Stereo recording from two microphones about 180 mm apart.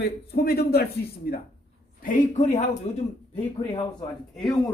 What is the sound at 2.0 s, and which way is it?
Speech, 45° left (ahead or behind).